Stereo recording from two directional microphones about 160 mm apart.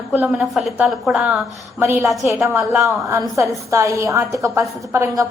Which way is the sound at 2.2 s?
15° right (ahead or behind).